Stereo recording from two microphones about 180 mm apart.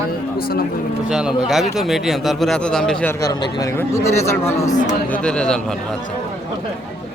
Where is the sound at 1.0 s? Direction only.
5° right (ahead or behind).